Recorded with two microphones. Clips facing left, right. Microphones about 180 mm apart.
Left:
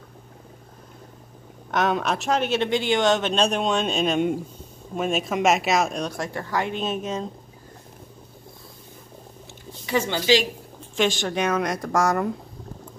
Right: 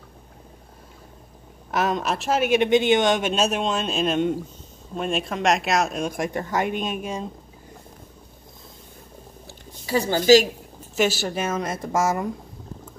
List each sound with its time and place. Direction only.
2.0 s speech: centre (ahead or behind)
6.1 s speech: 20° right (ahead or behind)
9.5 s a sound: 35° right (ahead or behind)
11.0 s speech: 5° right (ahead or behind)